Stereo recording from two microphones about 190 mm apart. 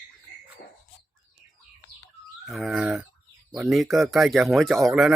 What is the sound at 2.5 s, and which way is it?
Speech, centre (ahead or behind).